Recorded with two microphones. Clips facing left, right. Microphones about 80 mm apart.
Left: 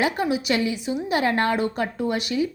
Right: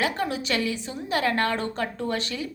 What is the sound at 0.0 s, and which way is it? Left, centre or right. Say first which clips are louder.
A woman's voice: left 4 dB; centre.